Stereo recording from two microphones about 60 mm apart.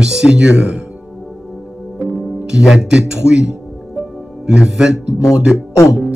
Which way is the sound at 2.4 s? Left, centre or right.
Centre.